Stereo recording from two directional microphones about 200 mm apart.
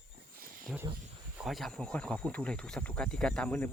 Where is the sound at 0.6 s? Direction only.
5° right (ahead or behind).